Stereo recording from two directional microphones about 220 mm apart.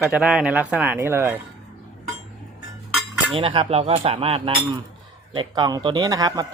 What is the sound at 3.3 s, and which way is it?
Speech, 25° right (ahead or behind).